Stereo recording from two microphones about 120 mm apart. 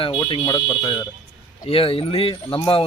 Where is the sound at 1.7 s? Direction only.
50° left (ahead or behind).